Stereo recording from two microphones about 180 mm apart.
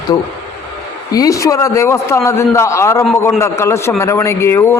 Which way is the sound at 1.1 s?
20° left (ahead or behind).